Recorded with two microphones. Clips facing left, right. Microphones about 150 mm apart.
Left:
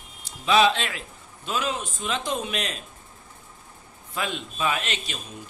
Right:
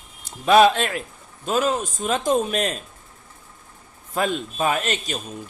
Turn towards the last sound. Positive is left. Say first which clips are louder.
# right 5 dB
turn(degrees=-45)  # may be behind; listen again after turning